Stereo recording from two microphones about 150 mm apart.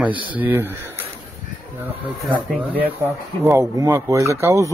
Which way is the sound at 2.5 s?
10° right (ahead or behind).